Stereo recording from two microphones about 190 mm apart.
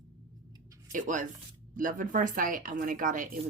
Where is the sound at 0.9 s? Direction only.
45° right (ahead or behind).